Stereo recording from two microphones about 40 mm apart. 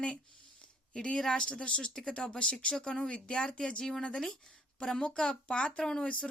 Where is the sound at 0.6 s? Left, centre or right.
Left.